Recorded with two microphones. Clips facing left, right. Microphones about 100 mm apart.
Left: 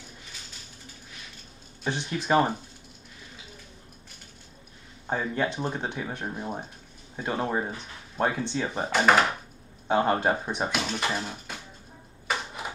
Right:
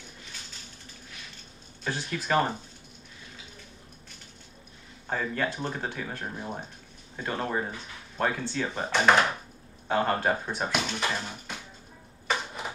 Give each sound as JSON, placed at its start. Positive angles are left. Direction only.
{"t": 1.9, "sound": "speech", "side_deg": 20}
{"t": 5.1, "sound": "speech", "side_deg": 20}
{"t": 8.9, "sound": "speech", "side_deg": 5}
{"t": 9.8, "sound": "speech", "side_deg": 20}
{"t": 10.7, "sound": "speech", "side_deg": 0}